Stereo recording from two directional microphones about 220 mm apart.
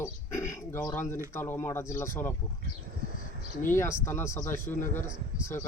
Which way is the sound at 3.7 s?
10° left (ahead or behind).